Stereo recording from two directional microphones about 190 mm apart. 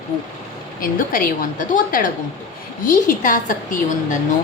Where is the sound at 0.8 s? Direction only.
50° left (ahead or behind).